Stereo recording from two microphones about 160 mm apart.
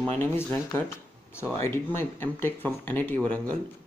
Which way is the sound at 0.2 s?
15° left (ahead or behind).